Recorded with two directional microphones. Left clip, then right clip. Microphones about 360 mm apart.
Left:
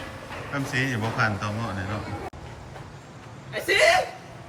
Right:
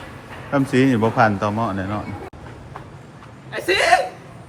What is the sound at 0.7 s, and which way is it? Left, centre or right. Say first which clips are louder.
Speech: right 9 dB; centre.